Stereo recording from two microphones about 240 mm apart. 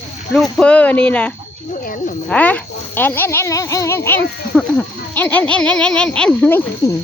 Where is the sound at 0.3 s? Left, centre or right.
Centre.